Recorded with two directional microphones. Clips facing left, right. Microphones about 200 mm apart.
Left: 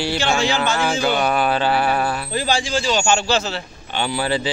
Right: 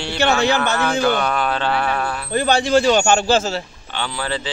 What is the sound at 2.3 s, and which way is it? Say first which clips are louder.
A man's voice: right 10 dB; 60° right (ahead or behind).